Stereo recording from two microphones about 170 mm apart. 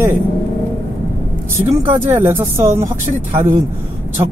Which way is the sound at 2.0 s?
15° right (ahead or behind).